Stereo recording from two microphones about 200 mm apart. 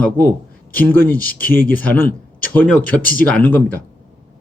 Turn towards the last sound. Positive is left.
turn(degrees=10)  # may be behind; listen again after turning